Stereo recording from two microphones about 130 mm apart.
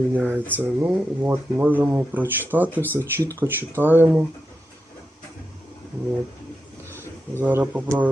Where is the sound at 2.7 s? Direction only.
15° left (ahead or behind).